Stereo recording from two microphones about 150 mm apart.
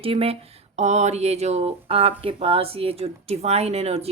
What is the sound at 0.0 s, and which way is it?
A woman's voice, 40° right (ahead or behind).